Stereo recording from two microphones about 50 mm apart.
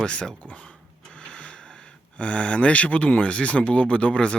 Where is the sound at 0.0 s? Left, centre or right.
Centre.